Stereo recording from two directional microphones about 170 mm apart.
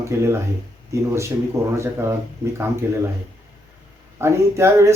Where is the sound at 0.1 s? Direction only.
15° right (ahead or behind).